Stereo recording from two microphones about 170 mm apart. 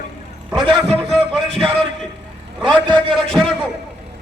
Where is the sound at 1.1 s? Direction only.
Centre (ahead or behind).